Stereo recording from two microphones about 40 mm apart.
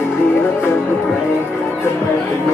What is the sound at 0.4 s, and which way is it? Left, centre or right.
Music, left.